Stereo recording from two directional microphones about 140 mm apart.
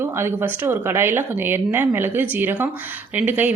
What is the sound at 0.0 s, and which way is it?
A woman's voice, 15° right (ahead or behind).